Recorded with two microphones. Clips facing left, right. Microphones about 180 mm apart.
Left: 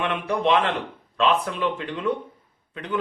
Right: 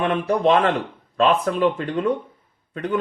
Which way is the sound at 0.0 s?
40° right (ahead or behind).